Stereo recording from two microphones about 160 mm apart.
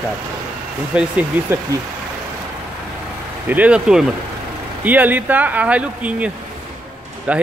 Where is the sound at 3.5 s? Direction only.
10° right (ahead or behind).